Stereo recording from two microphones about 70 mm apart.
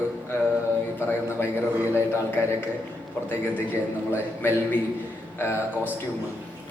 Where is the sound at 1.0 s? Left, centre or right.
Left.